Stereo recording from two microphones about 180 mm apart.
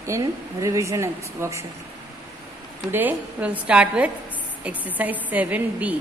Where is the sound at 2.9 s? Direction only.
10° right (ahead or behind).